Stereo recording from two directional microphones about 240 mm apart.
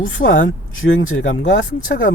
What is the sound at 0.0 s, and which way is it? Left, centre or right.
Speech, left.